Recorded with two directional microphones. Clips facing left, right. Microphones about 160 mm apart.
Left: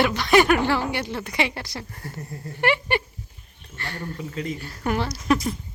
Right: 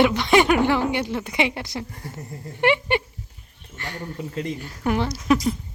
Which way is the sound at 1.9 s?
Centre (ahead or behind).